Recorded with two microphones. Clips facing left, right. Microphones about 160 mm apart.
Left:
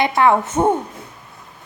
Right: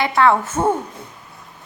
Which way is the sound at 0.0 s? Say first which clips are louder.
Left 1 dB; 15° left (ahead or behind).